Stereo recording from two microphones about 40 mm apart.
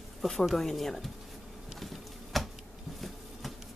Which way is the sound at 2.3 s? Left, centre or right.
Centre.